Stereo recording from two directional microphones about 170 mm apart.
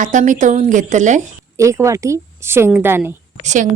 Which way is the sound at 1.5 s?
15° right (ahead or behind).